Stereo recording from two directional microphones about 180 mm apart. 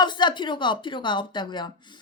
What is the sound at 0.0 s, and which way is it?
A woman's voice, 25° left (ahead or behind).